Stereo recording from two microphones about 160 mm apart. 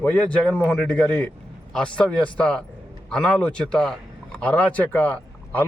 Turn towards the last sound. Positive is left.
turn(degrees=10)  # may be behind; listen again after turning